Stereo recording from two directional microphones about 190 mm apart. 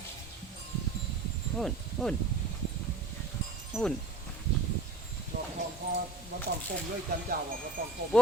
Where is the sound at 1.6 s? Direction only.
Centre (ahead or behind).